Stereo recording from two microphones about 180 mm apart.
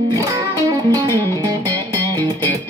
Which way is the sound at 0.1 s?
20° right (ahead or behind).